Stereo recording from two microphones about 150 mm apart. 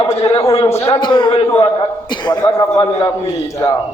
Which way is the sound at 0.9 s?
30° left (ahead or behind).